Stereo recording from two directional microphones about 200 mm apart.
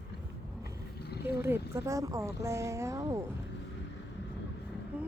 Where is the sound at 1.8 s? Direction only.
15° right (ahead or behind).